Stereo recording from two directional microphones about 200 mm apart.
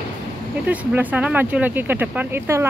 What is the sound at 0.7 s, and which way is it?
Speech, 10° right (ahead or behind).